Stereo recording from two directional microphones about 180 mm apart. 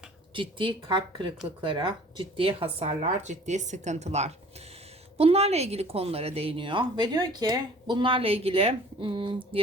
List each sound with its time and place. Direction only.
0.3 s speech: 25° right (ahead or behind)